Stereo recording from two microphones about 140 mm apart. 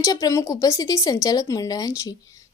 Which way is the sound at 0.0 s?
25° left (ahead or behind).